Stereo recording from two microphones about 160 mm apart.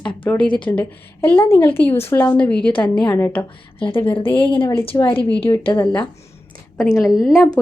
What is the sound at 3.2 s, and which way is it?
Speech, 10° left (ahead or behind).